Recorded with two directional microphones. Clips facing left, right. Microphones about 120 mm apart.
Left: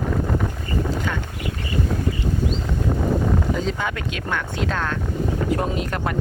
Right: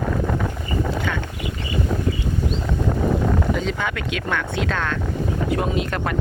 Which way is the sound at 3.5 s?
30° left (ahead or behind).